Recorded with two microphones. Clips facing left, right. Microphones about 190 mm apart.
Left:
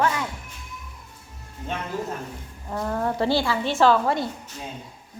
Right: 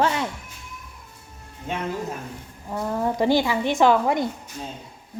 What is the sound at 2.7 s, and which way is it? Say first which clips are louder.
A woman's voice: right 1 dB; 10° right (ahead or behind).